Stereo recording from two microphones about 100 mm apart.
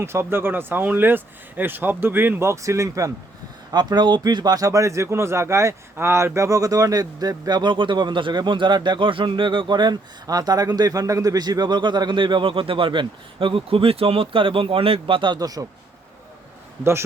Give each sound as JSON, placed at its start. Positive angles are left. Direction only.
{"t": 0.0, "sound": "speech", "side_deg": -25}
{"t": 3.7, "sound": "a man's voice", "side_deg": -45}
{"t": 15.4, "sound": "a man's voice", "side_deg": -40}